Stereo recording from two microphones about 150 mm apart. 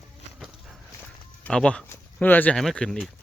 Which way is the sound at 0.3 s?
Centre (ahead or behind).